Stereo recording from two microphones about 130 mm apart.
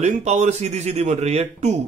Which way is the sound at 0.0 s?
60° right (ahead or behind).